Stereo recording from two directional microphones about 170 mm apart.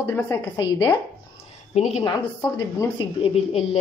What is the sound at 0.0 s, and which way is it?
Speech, 20° left (ahead or behind).